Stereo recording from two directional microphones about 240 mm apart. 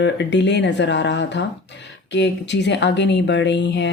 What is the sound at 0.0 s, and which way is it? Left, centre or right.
Speech, left.